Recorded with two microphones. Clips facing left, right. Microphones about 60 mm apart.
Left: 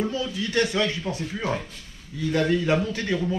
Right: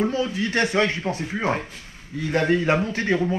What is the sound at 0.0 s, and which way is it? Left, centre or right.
A man's voice, right.